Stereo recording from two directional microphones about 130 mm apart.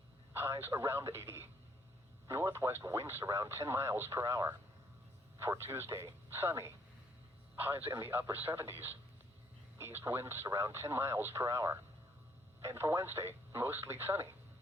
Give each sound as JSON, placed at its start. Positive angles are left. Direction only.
{"t": 0.3, "sound": "speech", "side_deg": -20}